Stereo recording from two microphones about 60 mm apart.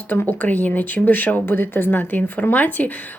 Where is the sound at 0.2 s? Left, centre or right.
Left.